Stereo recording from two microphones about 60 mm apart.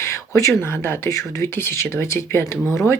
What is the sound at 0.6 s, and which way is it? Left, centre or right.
Speech, left.